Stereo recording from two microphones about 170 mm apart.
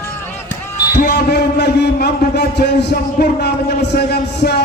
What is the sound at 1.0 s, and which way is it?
A man's voice, 75° left (ahead or behind).